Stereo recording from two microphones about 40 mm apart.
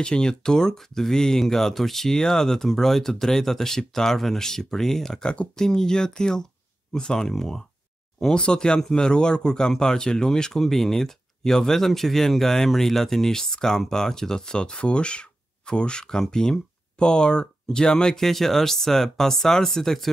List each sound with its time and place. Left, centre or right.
0.0 s speech: left
5.2 s speech: left
5.6 s speech: centre
18.1 s speech: centre